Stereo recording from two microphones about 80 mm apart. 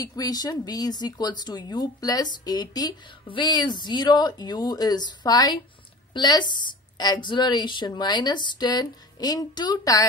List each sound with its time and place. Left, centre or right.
0.0 s a woman's voice: left
3.3 s a woman's voice: left